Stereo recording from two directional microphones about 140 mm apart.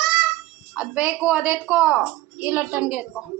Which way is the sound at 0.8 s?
10° right (ahead or behind).